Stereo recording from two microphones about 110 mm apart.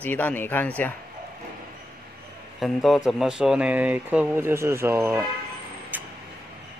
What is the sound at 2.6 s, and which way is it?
Speech, centre (ahead or behind).